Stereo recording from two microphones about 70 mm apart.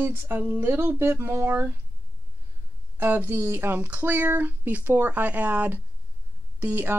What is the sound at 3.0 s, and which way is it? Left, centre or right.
Speech, right.